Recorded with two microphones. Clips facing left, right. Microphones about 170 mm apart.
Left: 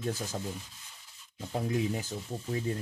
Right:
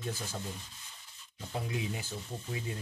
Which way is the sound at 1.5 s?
45° left (ahead or behind).